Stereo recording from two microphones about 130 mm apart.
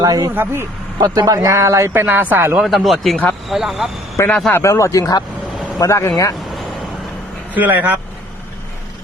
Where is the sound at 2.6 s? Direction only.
Centre (ahead or behind).